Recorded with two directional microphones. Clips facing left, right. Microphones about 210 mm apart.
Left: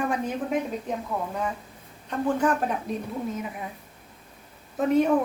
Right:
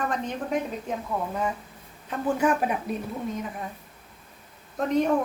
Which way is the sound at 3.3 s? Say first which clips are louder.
Even; 5° left (ahead or behind).